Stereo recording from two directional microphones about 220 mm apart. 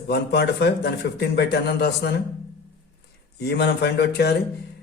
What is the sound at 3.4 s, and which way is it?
Speech, 50° left (ahead or behind).